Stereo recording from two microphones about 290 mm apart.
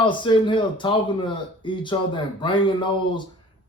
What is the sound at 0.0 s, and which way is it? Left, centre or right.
Speech, centre.